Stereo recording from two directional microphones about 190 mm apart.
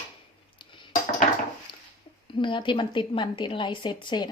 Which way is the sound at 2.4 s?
25° left (ahead or behind).